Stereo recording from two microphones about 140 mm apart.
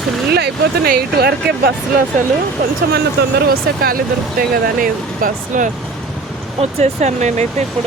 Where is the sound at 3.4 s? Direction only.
90° right.